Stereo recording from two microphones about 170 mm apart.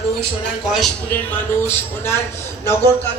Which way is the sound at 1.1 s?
15° left (ahead or behind).